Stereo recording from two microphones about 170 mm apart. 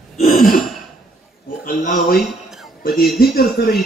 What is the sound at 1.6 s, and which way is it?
Speech, 60° left (ahead or behind).